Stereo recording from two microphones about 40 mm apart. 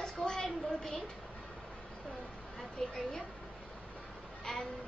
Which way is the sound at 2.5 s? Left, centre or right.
Centre.